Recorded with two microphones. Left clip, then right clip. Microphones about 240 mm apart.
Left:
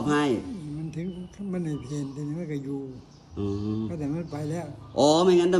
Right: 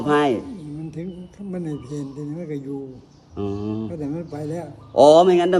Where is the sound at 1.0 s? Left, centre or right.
Centre.